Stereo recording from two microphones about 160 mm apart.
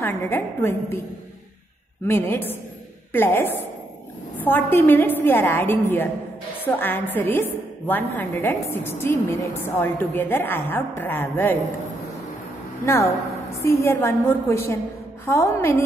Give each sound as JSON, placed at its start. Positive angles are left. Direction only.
{"t": 0.0, "sound": "a woman's voice", "side_deg": 15}
{"t": 2.0, "sound": "a woman's voice", "side_deg": 15}
{"t": 12.8, "sound": "a woman's voice", "side_deg": 20}